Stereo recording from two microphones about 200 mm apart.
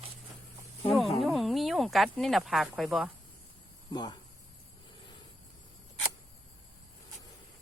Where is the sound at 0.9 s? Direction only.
Centre (ahead or behind).